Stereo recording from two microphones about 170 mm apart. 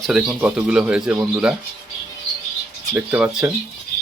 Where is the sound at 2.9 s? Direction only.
10° right (ahead or behind).